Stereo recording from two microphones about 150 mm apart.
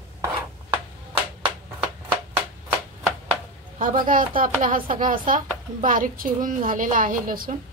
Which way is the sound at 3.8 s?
65° right (ahead or behind).